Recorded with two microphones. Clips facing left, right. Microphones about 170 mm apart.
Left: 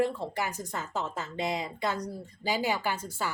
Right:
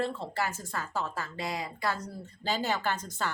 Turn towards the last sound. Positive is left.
turn(degrees=10)  # may be behind; listen again after turning